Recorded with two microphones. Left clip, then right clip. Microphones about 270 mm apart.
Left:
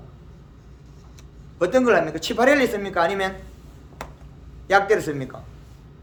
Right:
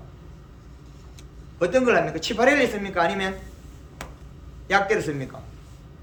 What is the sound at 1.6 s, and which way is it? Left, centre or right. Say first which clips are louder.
Speech: left 2 dB; left.